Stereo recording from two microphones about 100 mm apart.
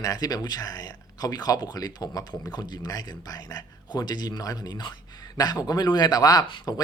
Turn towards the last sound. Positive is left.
turn(degrees=40)  # may be behind; listen again after turning